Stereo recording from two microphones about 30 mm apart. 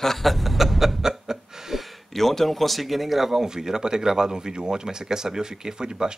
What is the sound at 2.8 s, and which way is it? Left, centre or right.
Speech, centre.